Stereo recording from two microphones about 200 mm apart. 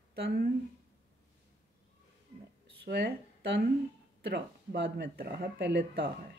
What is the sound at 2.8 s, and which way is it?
Speech, 55° right (ahead or behind).